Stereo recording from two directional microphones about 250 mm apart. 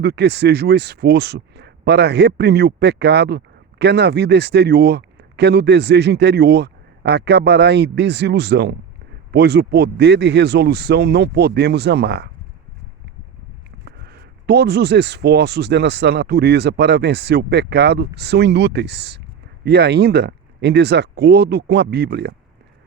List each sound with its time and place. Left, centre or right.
0.0 s a man's voice: right
13.8 s a man's voice: right